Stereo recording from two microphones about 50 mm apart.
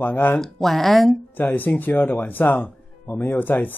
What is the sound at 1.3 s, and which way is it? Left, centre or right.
Speech, left.